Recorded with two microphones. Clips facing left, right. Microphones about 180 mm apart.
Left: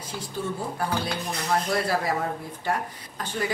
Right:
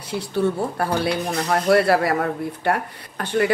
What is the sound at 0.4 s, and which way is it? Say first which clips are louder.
Speech: right 8 dB; 70° right (ahead or behind).